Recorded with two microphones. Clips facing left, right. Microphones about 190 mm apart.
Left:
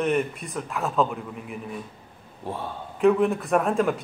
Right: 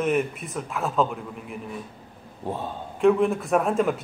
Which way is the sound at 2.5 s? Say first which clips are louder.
Right 2 dB; 15° right (ahead or behind).